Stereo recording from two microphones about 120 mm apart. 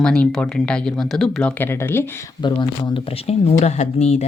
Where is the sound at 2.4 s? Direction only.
40° left (ahead or behind); by 4.3 s 65° left (ahead or behind).